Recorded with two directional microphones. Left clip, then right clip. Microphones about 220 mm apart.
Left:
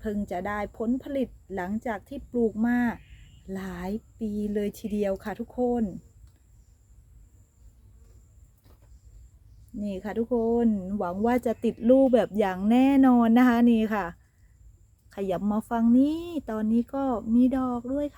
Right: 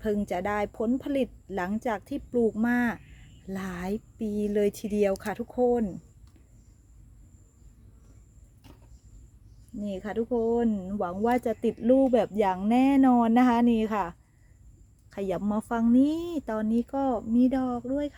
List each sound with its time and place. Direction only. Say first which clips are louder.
0.0 s speech: right 3 dB; 25° right (ahead or behind)
9.8 s speech: even; centre (ahead or behind)